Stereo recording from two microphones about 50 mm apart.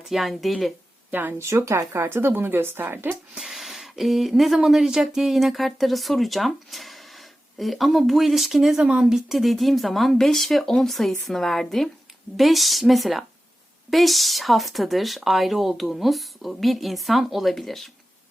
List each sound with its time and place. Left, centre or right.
0.1 s speech: centre
1.1 s speech: right
1.4 s speech: right
3.3 s speech: centre
8.8 s speech: centre
9.1 s speech: centre